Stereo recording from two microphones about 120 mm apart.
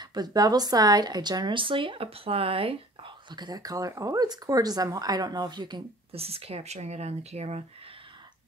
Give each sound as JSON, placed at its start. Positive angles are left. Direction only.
{"t": 0.0, "sound": "speech", "side_deg": -35}
{"t": 6.1, "sound": "speech", "side_deg": -55}